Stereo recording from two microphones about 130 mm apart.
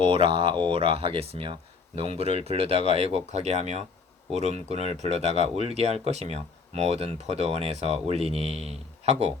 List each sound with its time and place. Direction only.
0.0 s speech: 40° right (ahead or behind)